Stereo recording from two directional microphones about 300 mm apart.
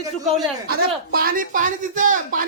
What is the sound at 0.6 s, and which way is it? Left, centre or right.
Speech, right.